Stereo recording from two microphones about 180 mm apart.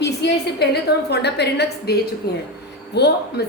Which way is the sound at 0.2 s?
70° left (ahead or behind).